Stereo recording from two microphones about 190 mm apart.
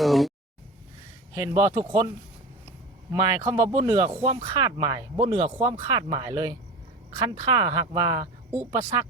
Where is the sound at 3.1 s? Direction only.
20° right (ahead or behind).